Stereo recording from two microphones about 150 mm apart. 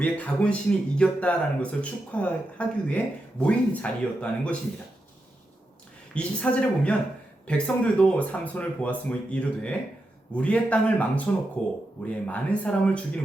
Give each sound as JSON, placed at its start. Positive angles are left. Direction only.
{"t": 0.0, "sound": "speech", "side_deg": 10}
{"t": 6.1, "sound": "speech", "side_deg": 5}